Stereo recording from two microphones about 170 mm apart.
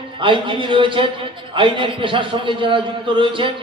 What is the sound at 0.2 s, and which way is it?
A man's voice, 30° right (ahead or behind).